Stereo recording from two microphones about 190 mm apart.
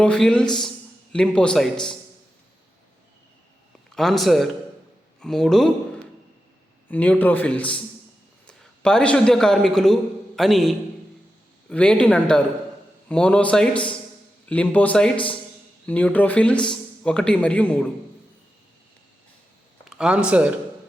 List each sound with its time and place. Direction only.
0.0 s a man's voice: 5° left (ahead or behind)
3.9 s a man's voice: centre (ahead or behind)
15.1 s a man's voice: 25° left (ahead or behind)
15.9 s a man's voice: 10° left (ahead or behind)
19.8 s speech: 5° right (ahead or behind)